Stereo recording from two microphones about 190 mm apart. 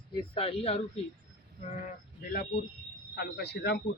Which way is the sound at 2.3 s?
50° left (ahead or behind).